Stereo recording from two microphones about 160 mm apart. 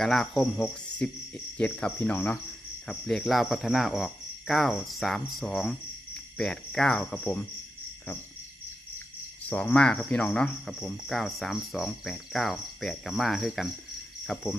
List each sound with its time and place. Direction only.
0.0 s speech: centre (ahead or behind)
9.5 s speech: 5° left (ahead or behind)